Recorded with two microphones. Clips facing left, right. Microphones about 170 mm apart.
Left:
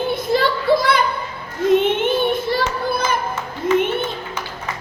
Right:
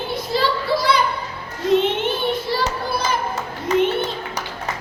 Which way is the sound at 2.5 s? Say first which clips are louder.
Left 2 dB; 55° left (ahead or behind).